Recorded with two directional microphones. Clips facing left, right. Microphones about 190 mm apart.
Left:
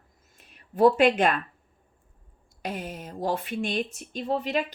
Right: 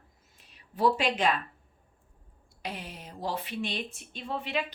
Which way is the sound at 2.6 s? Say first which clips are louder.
Left 6 dB; 45° left (ahead or behind).